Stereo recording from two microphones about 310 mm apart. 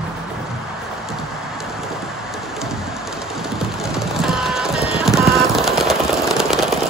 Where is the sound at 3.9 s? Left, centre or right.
Centre.